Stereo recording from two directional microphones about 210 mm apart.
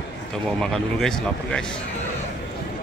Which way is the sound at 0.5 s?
Centre (ahead or behind).